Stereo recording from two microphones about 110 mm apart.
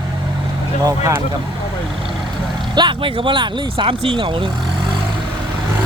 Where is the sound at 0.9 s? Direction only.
30° right (ahead or behind).